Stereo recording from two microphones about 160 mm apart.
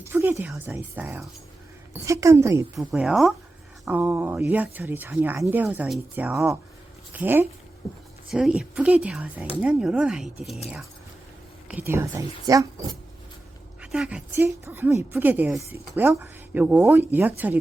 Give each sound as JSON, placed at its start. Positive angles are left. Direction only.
{"t": 0.1, "sound": "speech", "side_deg": -15}
{"t": 2.7, "sound": "speech", "side_deg": -5}
{"t": 7.8, "sound": "speech", "side_deg": 0}
{"t": 11.7, "sound": "speech", "side_deg": -15}
{"t": 13.8, "sound": "a woman's voice", "side_deg": -5}
{"t": 14.3, "sound": "speech", "side_deg": -15}